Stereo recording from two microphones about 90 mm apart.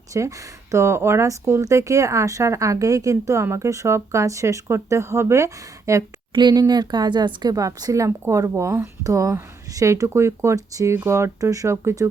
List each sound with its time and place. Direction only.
0.1 s speech: 35° right (ahead or behind)
6.3 s speech: 55° right (ahead or behind)
7.5 s speech: 45° right (ahead or behind)